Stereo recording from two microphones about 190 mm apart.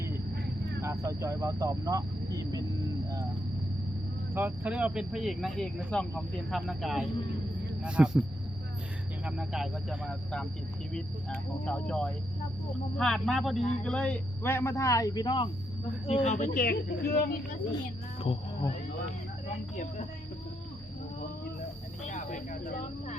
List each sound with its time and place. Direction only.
0.8 s speech: 15° right (ahead or behind)
4.4 s speech: 10° right (ahead or behind)
9.2 s speech: 5° right (ahead or behind); by 15.4 s 25° left (ahead or behind)
16.0 s speech: 35° left (ahead or behind); by 17.6 s 55° left (ahead or behind)
18.3 s speech: 30° left (ahead or behind)
19.7 s speech: 40° left (ahead or behind)
22.0 s snake: 40° left (ahead or behind)